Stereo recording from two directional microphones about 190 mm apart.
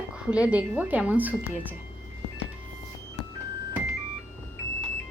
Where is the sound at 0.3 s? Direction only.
5° right (ahead or behind).